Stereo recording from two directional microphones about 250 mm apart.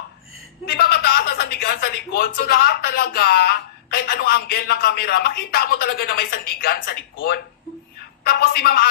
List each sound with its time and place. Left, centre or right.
0.7 s speech: left